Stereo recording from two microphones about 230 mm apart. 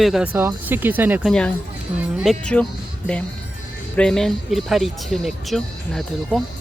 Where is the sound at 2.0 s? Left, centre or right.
Centre.